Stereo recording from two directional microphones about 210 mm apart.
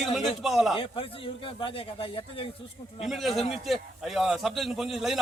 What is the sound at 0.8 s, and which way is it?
A man's voice, 25° left (ahead or behind).